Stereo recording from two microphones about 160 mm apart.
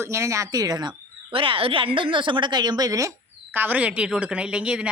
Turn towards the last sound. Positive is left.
turn(degrees=-5)  # may be behind; listen again after turning